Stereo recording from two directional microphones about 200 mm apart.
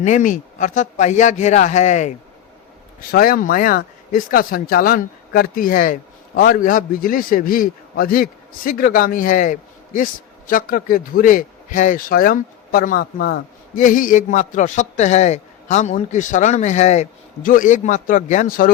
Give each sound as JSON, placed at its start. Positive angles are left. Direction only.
{"t": 0.0, "sound": "speech", "side_deg": 40}